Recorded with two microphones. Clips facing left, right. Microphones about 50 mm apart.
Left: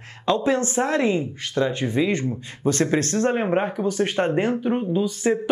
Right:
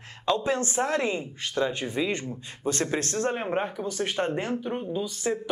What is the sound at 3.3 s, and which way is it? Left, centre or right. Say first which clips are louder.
Speech: left 6 dB; left.